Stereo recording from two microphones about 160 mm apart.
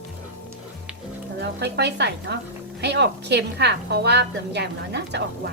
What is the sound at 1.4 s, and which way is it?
A woman's voice, 90° right.